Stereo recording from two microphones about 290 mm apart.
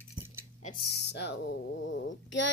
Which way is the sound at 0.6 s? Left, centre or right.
Left.